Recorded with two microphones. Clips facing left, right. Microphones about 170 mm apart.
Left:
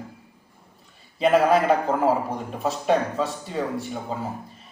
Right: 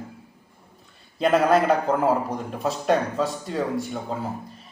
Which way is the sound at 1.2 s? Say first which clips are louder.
Left 1 dB; centre (ahead or behind).